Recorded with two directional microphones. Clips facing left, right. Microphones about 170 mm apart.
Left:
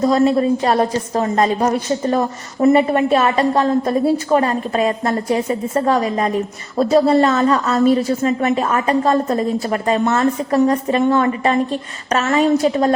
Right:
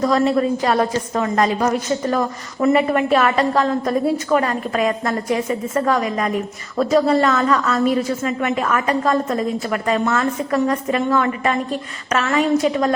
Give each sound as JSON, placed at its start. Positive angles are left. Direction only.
{"t": 0.0, "sound": "a woman's voice", "side_deg": 25}